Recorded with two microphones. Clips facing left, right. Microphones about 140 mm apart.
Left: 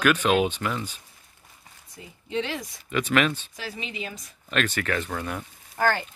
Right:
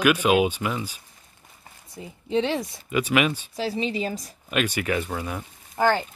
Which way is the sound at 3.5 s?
30° right (ahead or behind).